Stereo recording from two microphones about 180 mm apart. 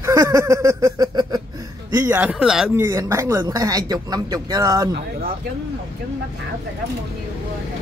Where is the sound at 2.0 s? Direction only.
10° right (ahead or behind).